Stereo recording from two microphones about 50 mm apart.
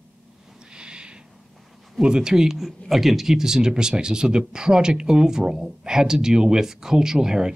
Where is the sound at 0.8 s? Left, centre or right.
Centre.